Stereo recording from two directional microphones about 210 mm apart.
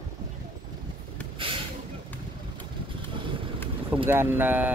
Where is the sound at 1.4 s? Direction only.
25° right (ahead or behind).